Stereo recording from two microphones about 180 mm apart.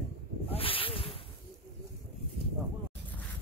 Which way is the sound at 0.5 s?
30° left (ahead or behind).